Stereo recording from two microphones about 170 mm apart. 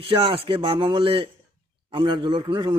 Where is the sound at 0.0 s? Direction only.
30° right (ahead or behind).